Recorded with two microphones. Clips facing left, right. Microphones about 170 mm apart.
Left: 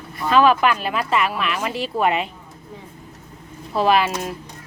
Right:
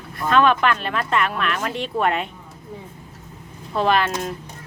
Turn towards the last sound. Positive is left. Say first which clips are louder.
# left 2 dB
turn(degrees=5)  # may be behind; listen again after turning